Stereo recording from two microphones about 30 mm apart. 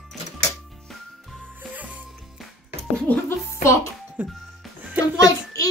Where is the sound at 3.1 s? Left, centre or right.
Left.